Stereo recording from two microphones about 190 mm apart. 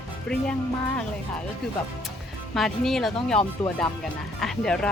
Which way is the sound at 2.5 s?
Centre (ahead or behind).